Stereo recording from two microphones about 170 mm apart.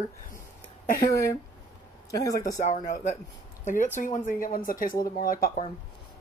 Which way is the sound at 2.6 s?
45° left (ahead or behind).